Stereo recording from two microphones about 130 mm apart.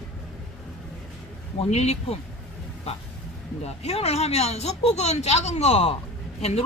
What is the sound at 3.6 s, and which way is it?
Speech, 50° left (ahead or behind).